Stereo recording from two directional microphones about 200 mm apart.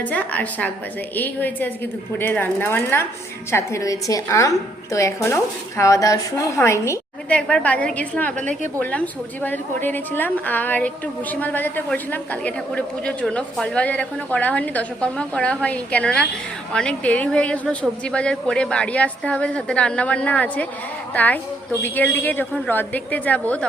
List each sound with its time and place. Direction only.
0.0 s a woman's voice: 5° left (ahead or behind)
8.4 s a woman's voice: 40° right (ahead or behind)
8.8 s a woman's voice: 10° left (ahead or behind)